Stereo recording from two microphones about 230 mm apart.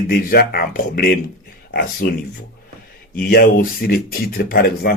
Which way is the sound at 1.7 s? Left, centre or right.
Left.